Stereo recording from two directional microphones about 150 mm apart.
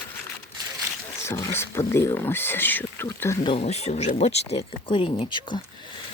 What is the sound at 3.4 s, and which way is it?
Speech, 45° left (ahead or behind).